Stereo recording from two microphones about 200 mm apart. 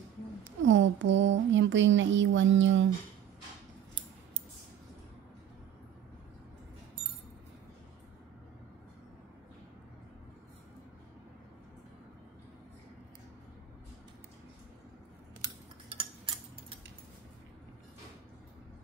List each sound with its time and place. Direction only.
0.4 s speech: 70° right (ahead or behind)
15.4 s cutlery: 25° right (ahead or behind)